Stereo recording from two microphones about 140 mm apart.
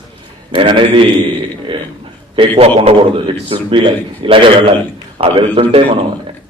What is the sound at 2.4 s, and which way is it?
Speech, 45° right (ahead or behind).